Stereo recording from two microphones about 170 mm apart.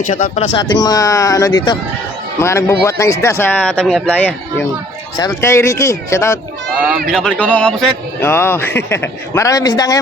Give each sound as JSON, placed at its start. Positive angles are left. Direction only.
{"t": 0.1, "sound": "speech", "side_deg": 40}
{"t": 0.5, "sound": "speech", "side_deg": 25}
{"t": 5.1, "sound": "speech", "side_deg": 20}
{"t": 7.1, "sound": "speech", "side_deg": 5}